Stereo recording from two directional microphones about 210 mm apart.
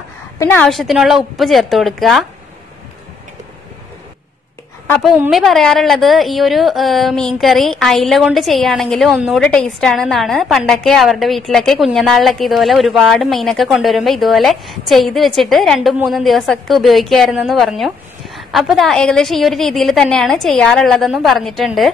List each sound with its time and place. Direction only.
0.4 s a woman's voice: 10° left (ahead or behind)
4.8 s a woman's voice: 5° left (ahead or behind)